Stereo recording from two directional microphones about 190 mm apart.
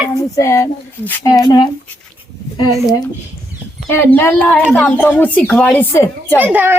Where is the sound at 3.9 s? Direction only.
10° left (ahead or behind).